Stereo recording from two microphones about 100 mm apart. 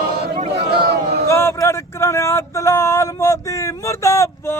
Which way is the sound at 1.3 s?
30° left (ahead or behind).